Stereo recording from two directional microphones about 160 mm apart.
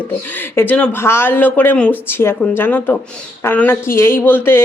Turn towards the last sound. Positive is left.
turn(degrees=15)  # may be behind; listen again after turning